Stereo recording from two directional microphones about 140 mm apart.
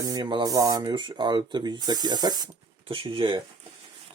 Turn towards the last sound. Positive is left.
turn(degrees=-35)  # may be behind; listen again after turning